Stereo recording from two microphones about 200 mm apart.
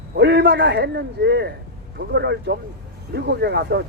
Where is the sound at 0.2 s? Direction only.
55° right (ahead or behind).